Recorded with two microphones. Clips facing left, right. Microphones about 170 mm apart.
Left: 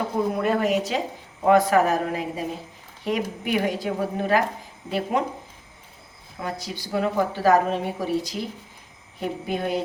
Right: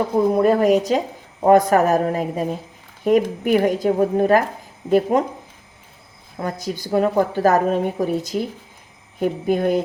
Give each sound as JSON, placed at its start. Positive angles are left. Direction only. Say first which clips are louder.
{"t": 0.4, "sound": "speech", "louder": "right 7 dB", "side_deg": -40}
{"t": 6.4, "sound": "speech", "louder": "right 5 dB", "side_deg": -45}